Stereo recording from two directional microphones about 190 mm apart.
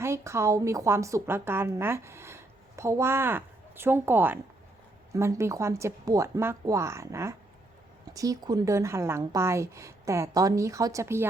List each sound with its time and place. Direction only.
0.0 s a woman's voice: 15° right (ahead or behind)